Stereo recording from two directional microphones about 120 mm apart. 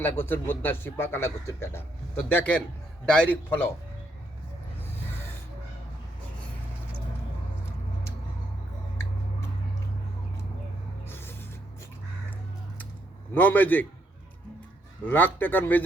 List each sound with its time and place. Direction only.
0.0 s a man's voice: 20° left (ahead or behind)
11.1 s a sound: 20° left (ahead or behind)
13.3 s speech: 15° left (ahead or behind)
15.0 s speech: 15° left (ahead or behind)